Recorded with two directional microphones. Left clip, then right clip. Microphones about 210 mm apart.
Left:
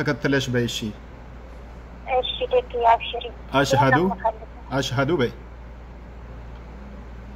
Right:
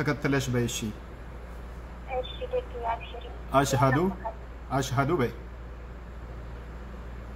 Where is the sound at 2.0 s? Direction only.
50° left (ahead or behind).